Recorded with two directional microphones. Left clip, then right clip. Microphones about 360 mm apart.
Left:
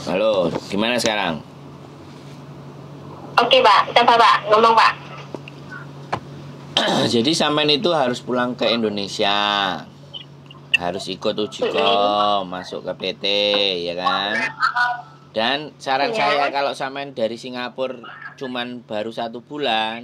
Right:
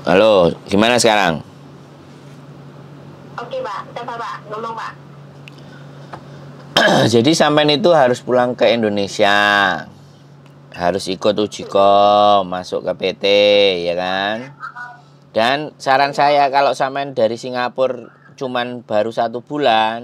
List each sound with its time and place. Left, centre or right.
0.1 s speech: right
3.3 s speech: left
6.7 s speech: right
14.4 s speech: left
15.3 s speech: right